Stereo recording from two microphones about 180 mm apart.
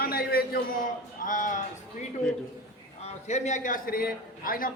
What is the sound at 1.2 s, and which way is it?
Speech, 45° left (ahead or behind).